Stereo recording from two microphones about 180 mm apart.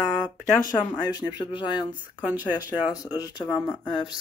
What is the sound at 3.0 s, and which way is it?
Speech, 20° left (ahead or behind).